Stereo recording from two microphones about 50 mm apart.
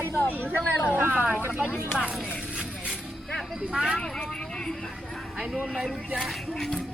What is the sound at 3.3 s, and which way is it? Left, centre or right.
Music, centre.